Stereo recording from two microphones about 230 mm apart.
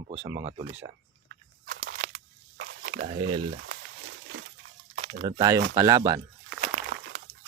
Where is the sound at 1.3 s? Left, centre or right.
Right.